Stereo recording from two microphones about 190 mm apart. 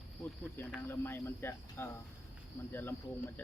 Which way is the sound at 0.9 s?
15° left (ahead or behind).